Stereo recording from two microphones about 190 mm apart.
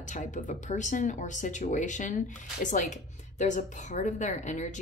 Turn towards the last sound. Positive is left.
turn(degrees=40)  # may be behind; listen again after turning